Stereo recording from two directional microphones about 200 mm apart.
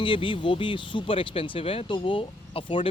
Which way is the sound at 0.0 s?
25° left (ahead or behind).